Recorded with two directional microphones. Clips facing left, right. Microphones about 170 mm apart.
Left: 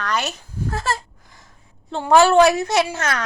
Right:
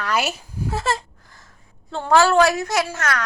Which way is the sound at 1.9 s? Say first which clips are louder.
Left 2 dB; 20° left (ahead or behind).